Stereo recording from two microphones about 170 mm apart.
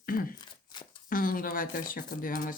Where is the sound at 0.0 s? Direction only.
60° left (ahead or behind).